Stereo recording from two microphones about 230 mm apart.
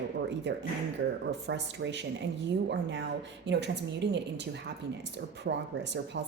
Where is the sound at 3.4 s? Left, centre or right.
Right.